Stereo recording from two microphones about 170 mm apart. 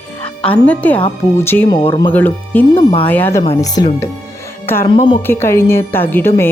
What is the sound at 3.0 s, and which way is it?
A woman's voice, 10° left (ahead or behind).